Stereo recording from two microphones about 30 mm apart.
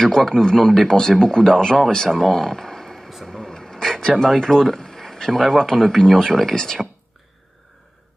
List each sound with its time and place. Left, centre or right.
0.0 s a man's voice: centre
2.2 s a sound: centre
4.2 s a man's voice: centre